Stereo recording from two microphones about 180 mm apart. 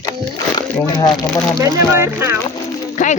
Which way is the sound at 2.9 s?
40° left (ahead or behind).